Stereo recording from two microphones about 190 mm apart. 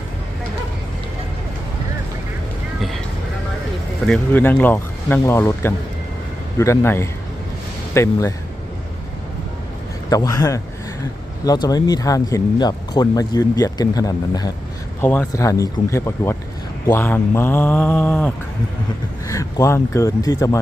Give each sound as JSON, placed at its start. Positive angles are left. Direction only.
{"t": 4.0, "sound": "speech", "side_deg": 5}
{"t": 10.1, "sound": "speech", "side_deg": 20}
{"t": 15.0, "sound": "speech", "side_deg": 10}